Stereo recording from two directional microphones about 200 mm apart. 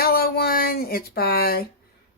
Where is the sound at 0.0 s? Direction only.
50° left (ahead or behind).